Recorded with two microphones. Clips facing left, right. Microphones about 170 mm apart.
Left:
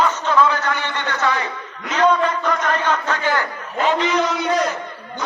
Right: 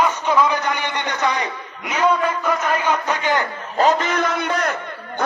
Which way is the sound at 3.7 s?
45° right (ahead or behind).